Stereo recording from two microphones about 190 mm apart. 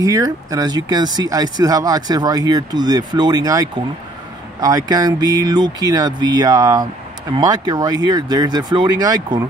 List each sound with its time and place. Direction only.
0.0 s speech: 20° right (ahead or behind)